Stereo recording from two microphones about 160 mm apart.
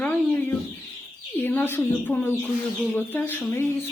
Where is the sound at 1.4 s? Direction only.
15° left (ahead or behind).